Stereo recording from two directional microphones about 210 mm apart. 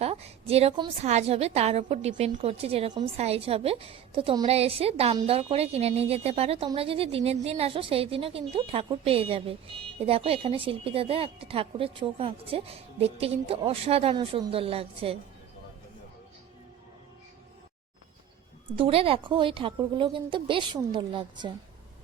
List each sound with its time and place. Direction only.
0.0 s a woman's voice: 30° right (ahead or behind)
18.8 s a woman's voice: 25° right (ahead or behind)